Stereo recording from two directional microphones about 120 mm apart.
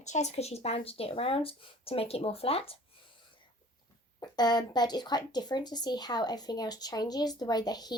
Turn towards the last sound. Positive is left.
turn(degrees=35)  # may be behind; listen again after turning